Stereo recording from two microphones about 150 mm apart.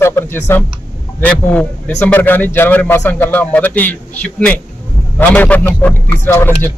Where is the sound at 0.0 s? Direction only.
15° left (ahead or behind).